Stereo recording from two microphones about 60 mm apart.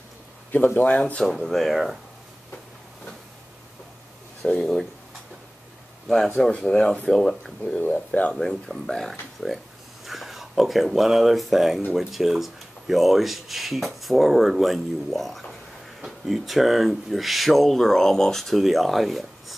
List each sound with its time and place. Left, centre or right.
0.7 s speech: left
1.2 s speech: centre
4.4 s speech: centre
6.0 s speech: centre
8.1 s speech: left
8.4 s speech: centre